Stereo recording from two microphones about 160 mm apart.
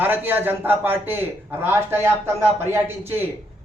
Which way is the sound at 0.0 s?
10° right (ahead or behind).